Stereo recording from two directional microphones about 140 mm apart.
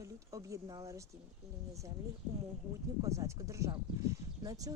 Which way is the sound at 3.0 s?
20° right (ahead or behind).